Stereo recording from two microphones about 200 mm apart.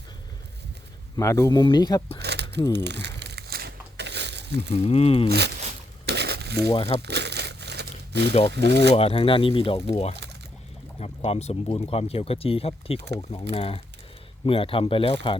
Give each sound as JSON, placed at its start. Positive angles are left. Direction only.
{"t": 1.1, "sound": "speech", "side_deg": 15}
{"t": 2.1, "sound": "a sound", "side_deg": -55}
{"t": 2.7, "sound": "crumpling", "side_deg": -60}
{"t": 4.8, "sound": "speech", "side_deg": 30}
{"t": 6.1, "sound": "a sound", "side_deg": -55}
{"t": 6.7, "sound": "speech", "side_deg": 25}
{"t": 7.0, "sound": "crumpling", "side_deg": -55}
{"t": 8.5, "sound": "speech", "side_deg": -60}
{"t": 9.0, "sound": "speech", "side_deg": 30}